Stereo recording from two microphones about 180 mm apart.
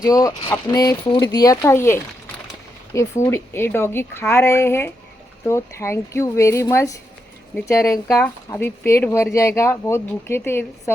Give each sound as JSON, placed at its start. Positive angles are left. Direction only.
{"t": 0.0, "sound": "speech", "side_deg": 20}